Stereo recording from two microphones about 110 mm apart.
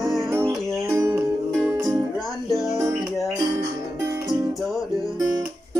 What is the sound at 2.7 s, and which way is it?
Music, 30° right (ahead or behind).